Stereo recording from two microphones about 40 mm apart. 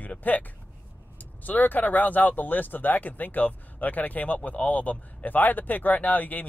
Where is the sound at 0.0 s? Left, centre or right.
Left.